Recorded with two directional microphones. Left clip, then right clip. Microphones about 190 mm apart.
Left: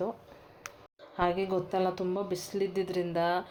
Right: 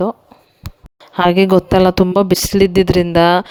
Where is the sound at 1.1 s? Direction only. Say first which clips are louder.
Right 18 dB; 55° right (ahead or behind).